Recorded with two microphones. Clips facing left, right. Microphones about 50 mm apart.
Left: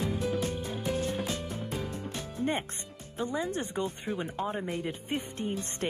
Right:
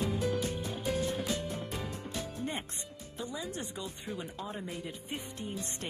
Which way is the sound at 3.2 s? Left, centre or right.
Left.